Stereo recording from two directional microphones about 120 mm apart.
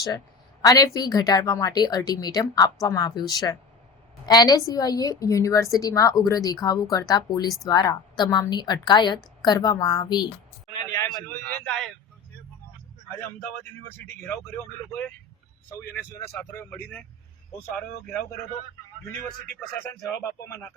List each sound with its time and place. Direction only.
0.6 s a woman's voice: 30° left (ahead or behind)
11.5 s speech: 10° left (ahead or behind)
14.3 s speech: 20° left (ahead or behind)
19.8 s a woman's voice: 20° left (ahead or behind)